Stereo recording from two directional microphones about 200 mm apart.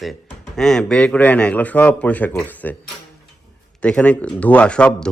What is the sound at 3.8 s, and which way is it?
A man's voice, 5° left (ahead or behind).